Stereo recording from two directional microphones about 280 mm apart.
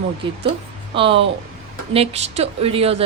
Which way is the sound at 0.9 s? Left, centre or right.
Centre.